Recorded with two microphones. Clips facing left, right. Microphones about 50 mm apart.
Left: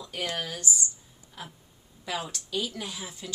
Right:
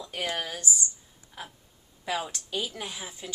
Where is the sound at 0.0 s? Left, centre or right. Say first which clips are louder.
Right 1 dB; centre.